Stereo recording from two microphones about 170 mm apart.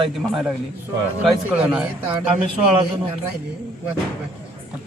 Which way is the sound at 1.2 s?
5° right (ahead or behind).